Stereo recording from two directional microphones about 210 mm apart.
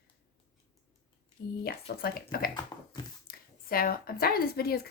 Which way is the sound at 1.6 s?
45° left (ahead or behind).